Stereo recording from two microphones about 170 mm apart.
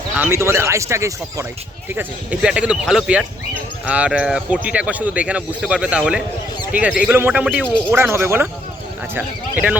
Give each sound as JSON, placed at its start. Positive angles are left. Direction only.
{"t": 0.2, "sound": "speech", "side_deg": -15}
{"t": 2.0, "sound": "speech", "side_deg": -5}